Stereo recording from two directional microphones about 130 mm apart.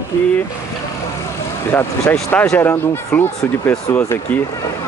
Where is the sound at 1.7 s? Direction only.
15° left (ahead or behind).